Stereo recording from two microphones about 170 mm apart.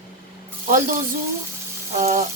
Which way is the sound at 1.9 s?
45° right (ahead or behind).